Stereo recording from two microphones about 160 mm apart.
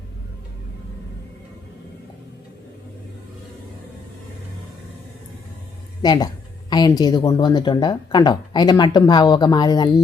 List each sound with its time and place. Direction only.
6.0 s speech: 25° left (ahead or behind)